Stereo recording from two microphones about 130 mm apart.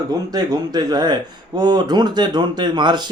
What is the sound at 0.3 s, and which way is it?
Speech, 30° right (ahead or behind).